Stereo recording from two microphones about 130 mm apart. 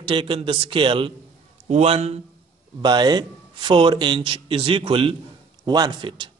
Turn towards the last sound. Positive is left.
turn(degrees=-40)  # may be behind; listen again after turning